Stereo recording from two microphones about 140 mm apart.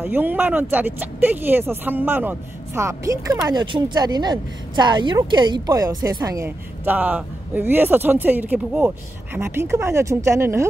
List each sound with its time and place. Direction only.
0.0 s speech: 15° right (ahead or behind)